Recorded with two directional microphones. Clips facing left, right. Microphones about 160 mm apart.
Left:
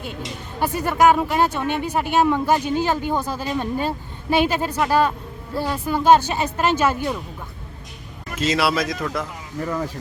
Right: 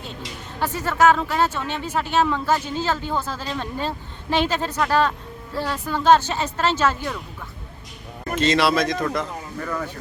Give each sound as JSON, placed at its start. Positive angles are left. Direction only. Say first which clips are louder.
{"t": 0.2, "sound": "speech", "louder": "left 2 dB", "side_deg": 10}
{"t": 8.4, "sound": "speech", "louder": "right 1 dB", "side_deg": 5}
{"t": 9.6, "sound": "speech", "louder": "left 4 dB", "side_deg": 30}